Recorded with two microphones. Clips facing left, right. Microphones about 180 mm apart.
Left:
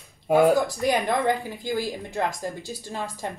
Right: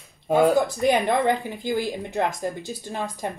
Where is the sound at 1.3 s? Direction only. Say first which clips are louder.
Right 2 dB; 20° right (ahead or behind).